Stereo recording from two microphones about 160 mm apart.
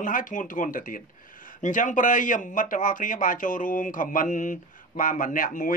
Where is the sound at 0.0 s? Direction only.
55° left (ahead or behind).